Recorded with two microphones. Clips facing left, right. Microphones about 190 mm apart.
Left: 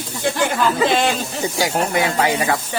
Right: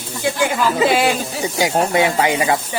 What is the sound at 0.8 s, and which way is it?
Speech, 10° right (ahead or behind).